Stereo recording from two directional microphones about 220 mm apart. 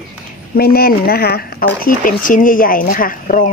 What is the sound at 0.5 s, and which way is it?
Speech, 45° left (ahead or behind).